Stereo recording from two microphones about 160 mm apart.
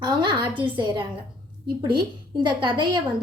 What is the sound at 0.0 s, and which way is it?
Speech, 30° right (ahead or behind).